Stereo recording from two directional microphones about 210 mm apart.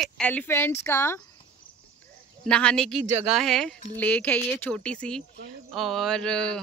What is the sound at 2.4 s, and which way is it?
Speech, 5° left (ahead or behind).